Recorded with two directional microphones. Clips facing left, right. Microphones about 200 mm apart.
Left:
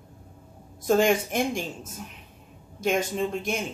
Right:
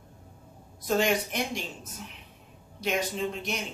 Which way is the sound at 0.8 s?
50° left (ahead or behind).